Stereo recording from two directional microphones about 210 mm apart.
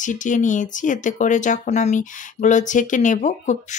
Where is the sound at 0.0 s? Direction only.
35° left (ahead or behind).